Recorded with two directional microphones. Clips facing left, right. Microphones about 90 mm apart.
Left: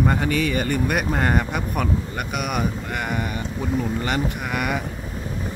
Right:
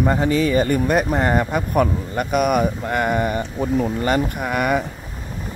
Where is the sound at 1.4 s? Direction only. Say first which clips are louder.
Right 6 dB; 40° right (ahead or behind).